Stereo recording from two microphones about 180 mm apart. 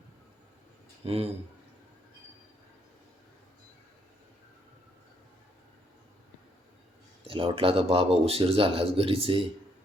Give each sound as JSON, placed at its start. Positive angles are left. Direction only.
{"t": 1.0, "sound": "speech", "side_deg": -35}
{"t": 7.3, "sound": "speech", "side_deg": -30}